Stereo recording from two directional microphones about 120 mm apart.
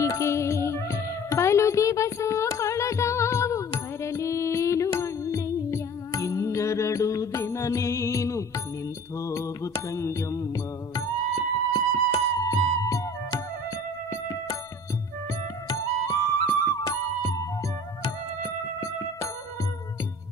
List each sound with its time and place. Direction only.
0.0 s music: 25° left (ahead or behind)
14.1 s music: 25° left (ahead or behind)
15.7 s music: 20° left (ahead or behind)